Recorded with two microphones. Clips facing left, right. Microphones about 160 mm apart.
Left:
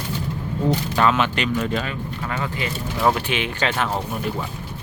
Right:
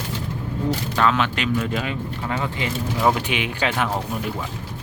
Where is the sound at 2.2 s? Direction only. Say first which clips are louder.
Right 1 dB; 20° right (ahead or behind).